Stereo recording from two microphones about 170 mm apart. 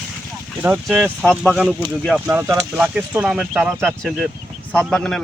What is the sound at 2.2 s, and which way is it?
A man's voice, 15° right (ahead or behind).